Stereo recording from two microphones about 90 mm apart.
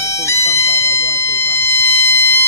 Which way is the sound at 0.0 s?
35° left (ahead or behind).